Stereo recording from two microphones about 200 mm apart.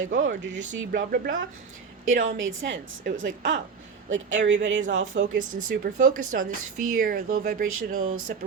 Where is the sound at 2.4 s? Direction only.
75° right (ahead or behind).